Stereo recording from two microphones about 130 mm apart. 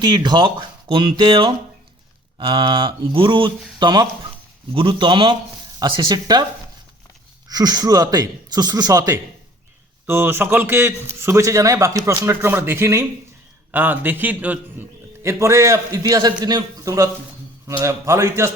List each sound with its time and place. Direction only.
0.0 s a man's voice: 35° right (ahead or behind)
7.4 s a man's voice: 30° right (ahead or behind)